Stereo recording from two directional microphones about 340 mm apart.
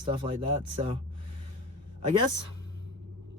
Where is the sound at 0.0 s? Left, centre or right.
Centre.